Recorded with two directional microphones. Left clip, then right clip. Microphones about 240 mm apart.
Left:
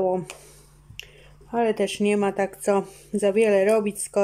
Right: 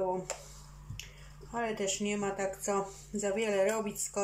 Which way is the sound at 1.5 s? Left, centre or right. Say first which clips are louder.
Left 11 dB; left.